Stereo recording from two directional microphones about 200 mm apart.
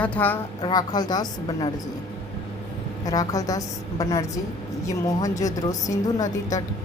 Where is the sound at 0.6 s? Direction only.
20° left (ahead or behind).